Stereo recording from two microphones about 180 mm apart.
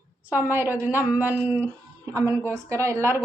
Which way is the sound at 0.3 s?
10° right (ahead or behind).